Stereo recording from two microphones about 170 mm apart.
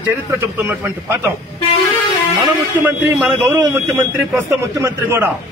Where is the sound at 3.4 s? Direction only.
15° right (ahead or behind).